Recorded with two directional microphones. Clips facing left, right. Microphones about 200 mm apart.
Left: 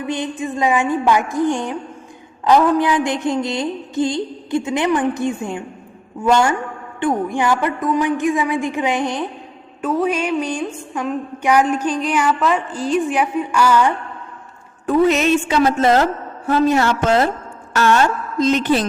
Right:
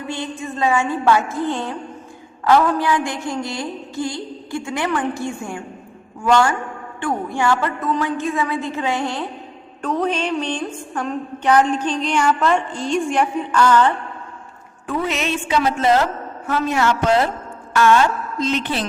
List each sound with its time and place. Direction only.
0.1 s music: 15° left (ahead or behind)
2.4 s a sound: 20° left (ahead or behind)
7.0 s music: 20° left (ahead or behind)
14.8 s a woman's voice: 40° left (ahead or behind)